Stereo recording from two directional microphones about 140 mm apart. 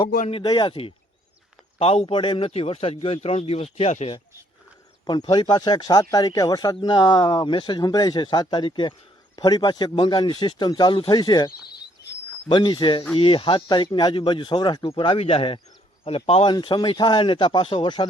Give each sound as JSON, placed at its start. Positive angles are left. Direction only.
{"t": 0.4, "sound": "a man's voice", "side_deg": 35}
{"t": 5.3, "sound": "a man's voice", "side_deg": 30}